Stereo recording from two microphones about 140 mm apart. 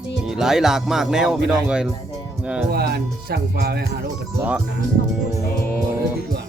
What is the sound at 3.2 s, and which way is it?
Speech, 90° right.